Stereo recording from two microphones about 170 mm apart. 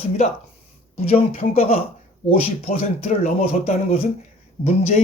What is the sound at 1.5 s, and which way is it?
Speech, 35° left (ahead or behind).